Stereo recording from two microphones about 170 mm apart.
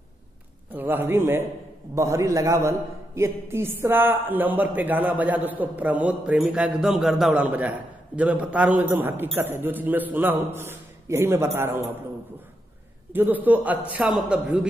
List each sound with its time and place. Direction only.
0.7 s a man's voice: 10° right (ahead or behind)
13.1 s a man's voice: 10° right (ahead or behind)